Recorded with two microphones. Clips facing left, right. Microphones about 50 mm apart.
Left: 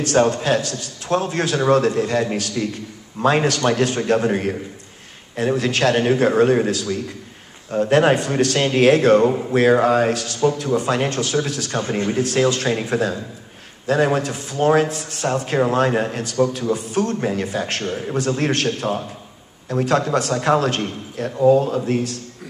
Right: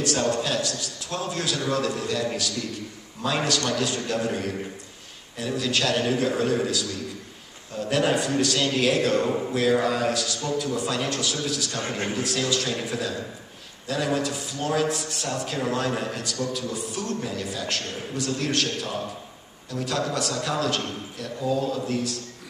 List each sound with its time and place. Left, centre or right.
0.0 s a man's voice: left